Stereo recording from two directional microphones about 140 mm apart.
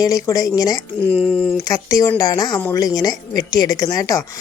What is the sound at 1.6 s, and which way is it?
A woman's voice, 25° left (ahead or behind).